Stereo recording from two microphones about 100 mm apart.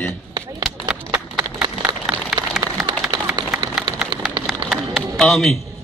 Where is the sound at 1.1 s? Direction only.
35° right (ahead or behind).